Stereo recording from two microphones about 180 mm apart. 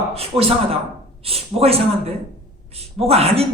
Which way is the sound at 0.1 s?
35° right (ahead or behind).